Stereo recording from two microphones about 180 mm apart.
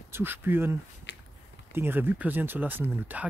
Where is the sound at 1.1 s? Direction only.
80° left.